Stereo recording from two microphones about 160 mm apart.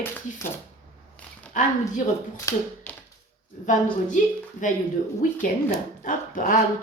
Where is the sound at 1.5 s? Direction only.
55° left (ahead or behind).